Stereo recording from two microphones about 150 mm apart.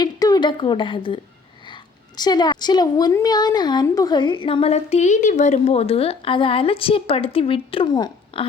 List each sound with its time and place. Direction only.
0.0 s a woman's voice: 25° left (ahead or behind)